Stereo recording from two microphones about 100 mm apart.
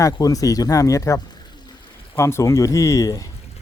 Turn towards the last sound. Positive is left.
turn(degrees=35)  # may be behind; listen again after turning